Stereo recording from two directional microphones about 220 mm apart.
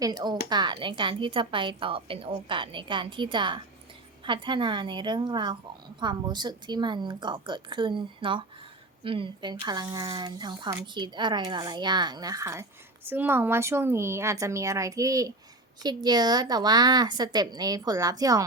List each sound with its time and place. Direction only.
0.0 s a woman's voice: 20° right (ahead or behind)